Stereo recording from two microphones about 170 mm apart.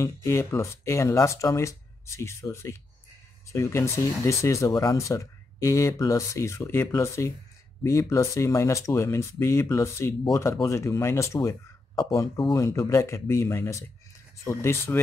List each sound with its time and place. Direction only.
0.0 s speech: 15° left (ahead or behind)